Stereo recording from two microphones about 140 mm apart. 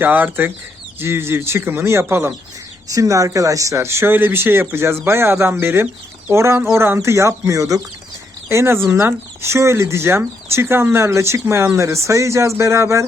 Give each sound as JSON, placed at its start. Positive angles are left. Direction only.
{"t": 0.0, "sound": "speech", "side_deg": -15}